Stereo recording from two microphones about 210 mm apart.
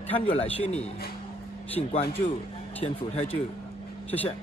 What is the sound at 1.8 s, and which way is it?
A man's voice, 30° left (ahead or behind).